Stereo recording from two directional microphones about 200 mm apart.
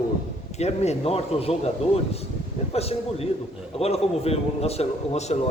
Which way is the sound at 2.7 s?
30° left (ahead or behind).